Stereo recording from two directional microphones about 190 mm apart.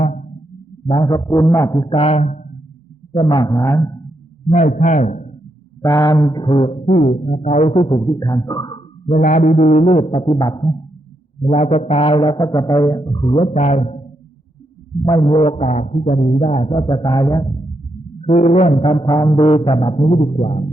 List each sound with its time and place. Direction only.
0.0 s music: 45° left (ahead or behind)
0.9 s mantra: 25° left (ahead or behind); by 2.6 s 40° left (ahead or behind)
3.1 s mantra: 25° left (ahead or behind)
4.4 s a sound: 40° left (ahead or behind)
5.8 s mantra: 15° left (ahead or behind)
7.0 s a sound: 45° left (ahead or behind)
7.9 s mantra: 15° left (ahead or behind)
9.0 s a sound: 40° left (ahead or behind); by 10.8 s 25° left (ahead or behind)
11.4 s mantra: 35° left (ahead or behind)
13.5 s speech: 35° left (ahead or behind)
15.0 s a sound: 25° left (ahead or behind)
17.0 s mantra: 20° left (ahead or behind)
18.2 s mantra: 35° left (ahead or behind)